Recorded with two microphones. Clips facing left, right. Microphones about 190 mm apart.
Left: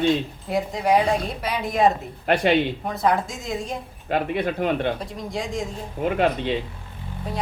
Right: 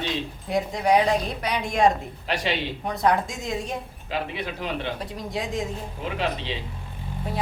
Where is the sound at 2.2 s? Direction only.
55° left (ahead or behind).